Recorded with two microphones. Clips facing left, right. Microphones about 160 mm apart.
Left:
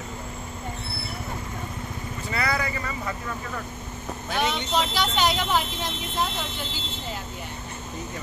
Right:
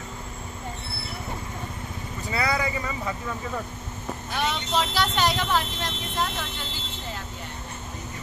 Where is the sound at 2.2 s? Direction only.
15° right (ahead or behind).